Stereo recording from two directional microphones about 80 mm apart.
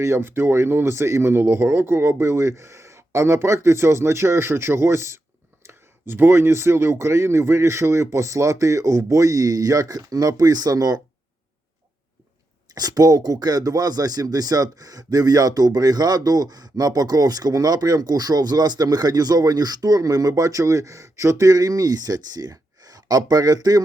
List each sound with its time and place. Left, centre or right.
0.0 s speech: right
12.7 s speech: right